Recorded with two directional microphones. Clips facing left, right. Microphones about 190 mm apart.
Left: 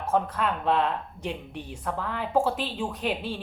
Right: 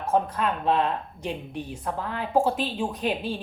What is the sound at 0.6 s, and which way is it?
Speech, 40° right (ahead or behind).